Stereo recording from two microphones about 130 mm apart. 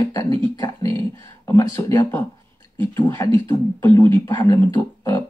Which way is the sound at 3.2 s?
25° left (ahead or behind).